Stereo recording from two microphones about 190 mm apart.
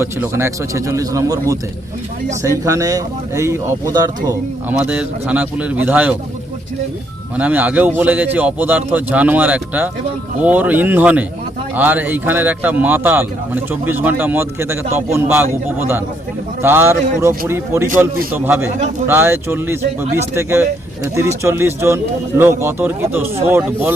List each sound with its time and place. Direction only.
0.0 s speech: 15° right (ahead or behind)
4.7 s speech: 5° right (ahead or behind)
7.3 s speech: 10° right (ahead or behind)
16.6 s speech: 10° right (ahead or behind)